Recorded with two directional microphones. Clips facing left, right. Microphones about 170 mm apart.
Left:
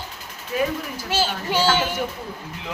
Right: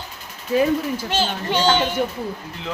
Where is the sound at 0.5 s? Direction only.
25° right (ahead or behind).